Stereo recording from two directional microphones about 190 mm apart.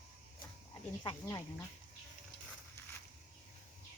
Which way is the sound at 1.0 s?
20° left (ahead or behind).